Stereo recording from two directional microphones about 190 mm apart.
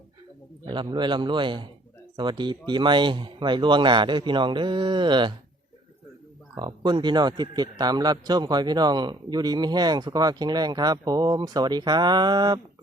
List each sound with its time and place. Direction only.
0.7 s a man's voice: 25° right (ahead or behind)
6.6 s a man's voice: 20° right (ahead or behind)